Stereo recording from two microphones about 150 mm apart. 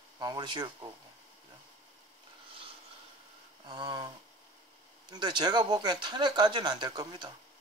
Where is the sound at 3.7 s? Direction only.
30° right (ahead or behind).